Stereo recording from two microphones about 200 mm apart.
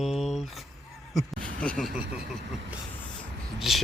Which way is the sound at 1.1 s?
Centre (ahead or behind).